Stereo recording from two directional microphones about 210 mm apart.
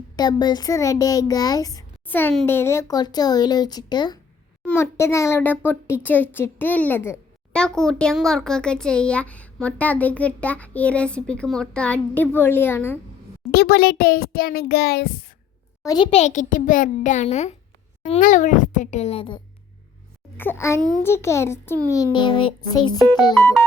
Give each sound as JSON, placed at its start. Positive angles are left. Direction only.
{"t": 0.2, "sound": "a child's voice", "side_deg": 20}
{"t": 13.5, "sound": "a child's voice", "side_deg": 50}
{"t": 15.8, "sound": "a child's voice", "side_deg": 20}
{"t": 20.3, "sound": "a child's voice", "side_deg": 10}